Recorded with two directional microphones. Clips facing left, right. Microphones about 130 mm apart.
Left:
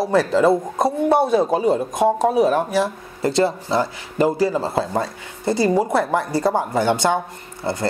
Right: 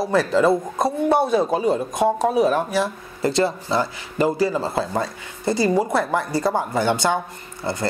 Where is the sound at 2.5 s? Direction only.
45° left (ahead or behind).